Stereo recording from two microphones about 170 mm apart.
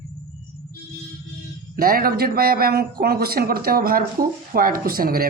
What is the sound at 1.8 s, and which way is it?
Speech, 60° right (ahead or behind).